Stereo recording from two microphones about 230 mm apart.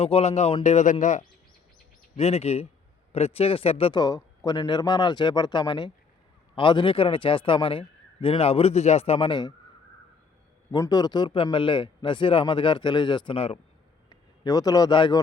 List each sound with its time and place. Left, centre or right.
0.0 s speech: left
10.7 s a man's voice: centre